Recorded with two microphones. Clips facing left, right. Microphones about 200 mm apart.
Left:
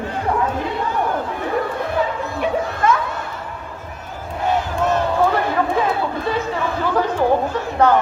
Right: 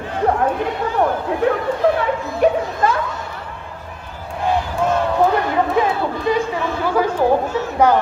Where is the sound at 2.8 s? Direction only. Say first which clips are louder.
Left 1 dB; 35° right (ahead or behind).